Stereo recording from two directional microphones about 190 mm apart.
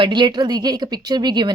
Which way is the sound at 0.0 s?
25° right (ahead or behind).